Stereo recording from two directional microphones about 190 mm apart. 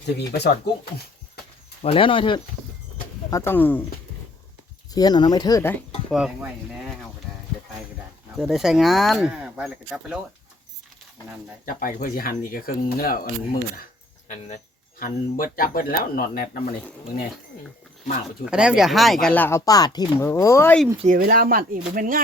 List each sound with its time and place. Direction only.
0.2 s speech: 60° left (ahead or behind)
1.8 s speech: 30° left (ahead or behind)
3.2 s speech: 15° left (ahead or behind)
4.9 s speech: 20° left (ahead or behind)
6.1 s speech: centre (ahead or behind)
8.4 s speech: centre (ahead or behind)
11.6 s speech: 45° left (ahead or behind)
18.4 s speech: 5° right (ahead or behind); by 20.8 s 10° left (ahead or behind)
21.2 s speech: 50° right (ahead or behind)